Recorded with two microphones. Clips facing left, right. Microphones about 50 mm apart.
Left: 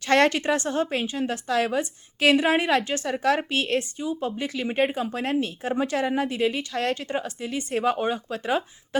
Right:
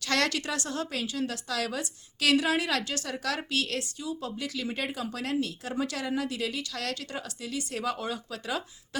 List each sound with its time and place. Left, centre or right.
0.0 s a woman's voice: left